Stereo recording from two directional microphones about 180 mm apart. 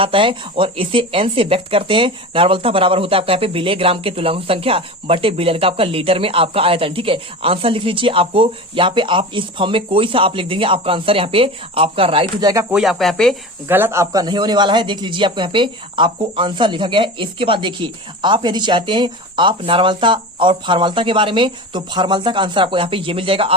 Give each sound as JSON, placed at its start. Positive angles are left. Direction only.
{"t": 0.0, "sound": "speech", "side_deg": -30}
{"t": 12.7, "sound": "speech", "side_deg": 0}
{"t": 13.7, "sound": "speech", "side_deg": -10}